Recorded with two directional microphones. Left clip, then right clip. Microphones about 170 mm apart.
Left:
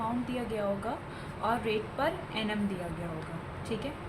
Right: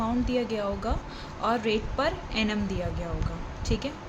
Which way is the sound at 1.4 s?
90° right.